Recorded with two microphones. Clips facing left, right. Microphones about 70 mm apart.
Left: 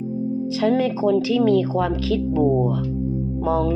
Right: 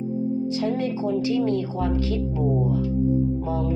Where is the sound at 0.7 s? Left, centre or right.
Left.